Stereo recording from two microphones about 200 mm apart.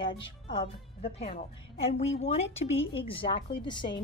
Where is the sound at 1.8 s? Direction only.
30° left (ahead or behind).